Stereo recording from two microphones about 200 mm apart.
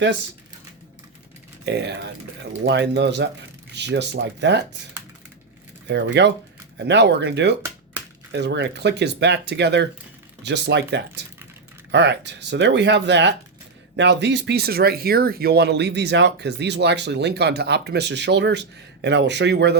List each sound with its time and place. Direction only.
1.6 s speech: 60° right (ahead or behind)
5.9 s speech: 60° right (ahead or behind)